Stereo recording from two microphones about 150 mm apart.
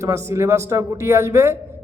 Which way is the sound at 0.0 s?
20° right (ahead or behind).